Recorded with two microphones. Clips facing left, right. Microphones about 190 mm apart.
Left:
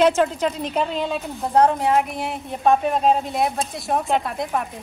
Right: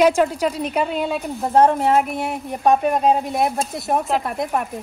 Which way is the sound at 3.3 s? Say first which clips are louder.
Right 2 dB; centre (ahead or behind).